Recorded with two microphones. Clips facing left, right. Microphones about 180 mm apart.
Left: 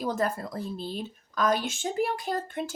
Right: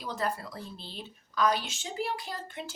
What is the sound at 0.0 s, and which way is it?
A woman's voice, 45° left (ahead or behind).